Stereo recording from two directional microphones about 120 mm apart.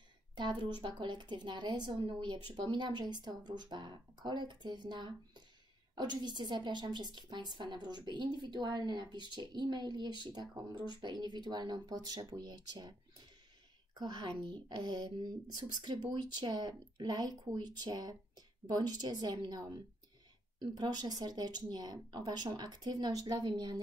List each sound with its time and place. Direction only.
0.4 s a woman's voice: 40° right (ahead or behind)
13.9 s a woman's voice: 35° right (ahead or behind)